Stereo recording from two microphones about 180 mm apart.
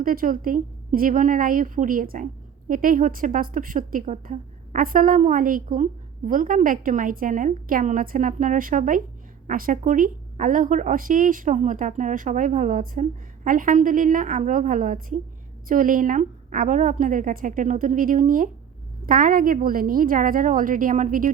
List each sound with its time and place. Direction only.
0.0 s a woman's voice: 50° right (ahead or behind)